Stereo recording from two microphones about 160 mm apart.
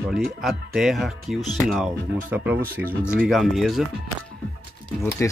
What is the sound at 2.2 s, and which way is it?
Speech, 10° right (ahead or behind).